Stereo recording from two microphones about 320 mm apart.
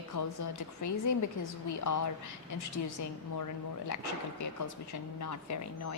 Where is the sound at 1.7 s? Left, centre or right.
Left.